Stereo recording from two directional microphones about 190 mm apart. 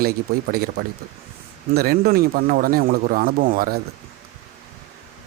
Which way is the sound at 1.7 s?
50° right (ahead or behind).